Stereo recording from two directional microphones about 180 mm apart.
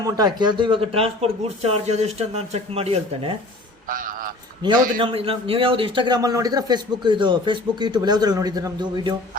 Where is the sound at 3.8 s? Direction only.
50° right (ahead or behind).